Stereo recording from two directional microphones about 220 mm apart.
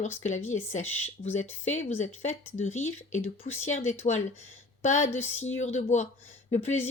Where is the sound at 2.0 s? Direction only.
30° left (ahead or behind).